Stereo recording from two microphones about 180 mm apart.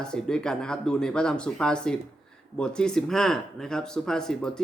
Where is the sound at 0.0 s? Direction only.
5° left (ahead or behind).